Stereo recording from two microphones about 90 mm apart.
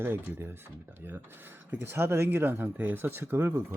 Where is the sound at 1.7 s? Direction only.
25° right (ahead or behind).